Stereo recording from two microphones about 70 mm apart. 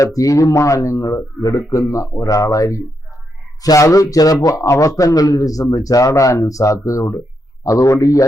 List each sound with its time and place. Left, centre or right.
0.0 s a man's voice: left